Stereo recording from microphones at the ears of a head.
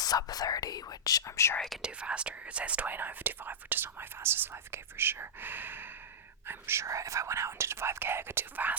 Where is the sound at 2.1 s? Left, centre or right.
Right.